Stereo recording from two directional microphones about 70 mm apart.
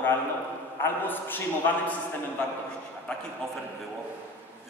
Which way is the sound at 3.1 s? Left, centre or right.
Centre.